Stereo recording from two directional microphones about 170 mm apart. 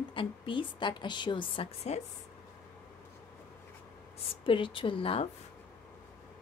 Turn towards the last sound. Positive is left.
turn(degrees=35)  # may be behind; listen again after turning